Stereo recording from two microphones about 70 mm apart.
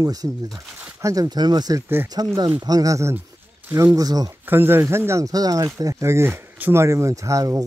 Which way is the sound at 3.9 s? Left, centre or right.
Right.